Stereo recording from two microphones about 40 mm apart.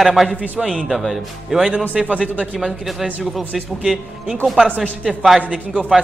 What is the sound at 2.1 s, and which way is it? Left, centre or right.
Speech, right.